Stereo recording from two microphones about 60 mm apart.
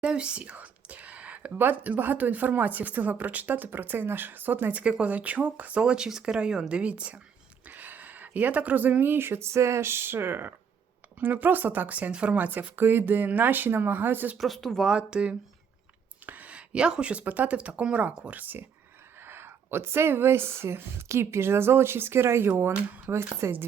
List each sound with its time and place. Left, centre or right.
0.0 s speech: centre; by 14.3 s right
14.3 s speech: centre
14.8 s speech: centre
16.2 s speech: right
19.2 s speech: right